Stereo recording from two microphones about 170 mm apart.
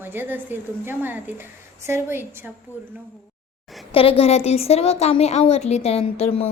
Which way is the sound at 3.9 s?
35° left (ahead or behind).